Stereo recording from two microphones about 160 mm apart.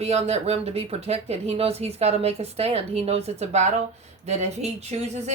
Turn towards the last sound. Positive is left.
turn(degrees=-45)  # may be behind; listen again after turning